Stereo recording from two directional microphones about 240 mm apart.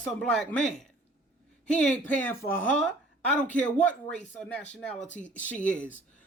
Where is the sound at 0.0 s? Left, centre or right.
Centre.